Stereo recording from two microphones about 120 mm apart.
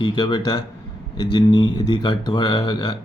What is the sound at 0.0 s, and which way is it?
Speech, 40° left (ahead or behind).